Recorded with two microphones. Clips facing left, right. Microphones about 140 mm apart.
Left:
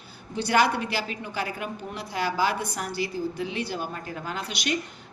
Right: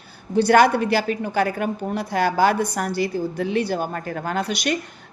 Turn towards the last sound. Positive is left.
turn(degrees=-45)  # may be behind; listen again after turning